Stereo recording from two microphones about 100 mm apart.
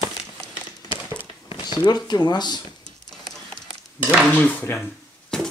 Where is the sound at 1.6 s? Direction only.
45° left (ahead or behind).